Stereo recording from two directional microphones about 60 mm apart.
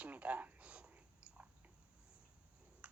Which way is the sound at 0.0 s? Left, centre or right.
Right.